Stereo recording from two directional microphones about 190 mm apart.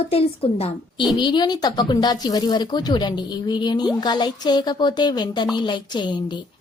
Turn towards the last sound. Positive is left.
turn(degrees=25)  # may be behind; listen again after turning